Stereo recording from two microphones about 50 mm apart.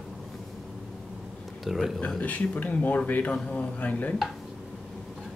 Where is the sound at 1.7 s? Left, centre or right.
Centre.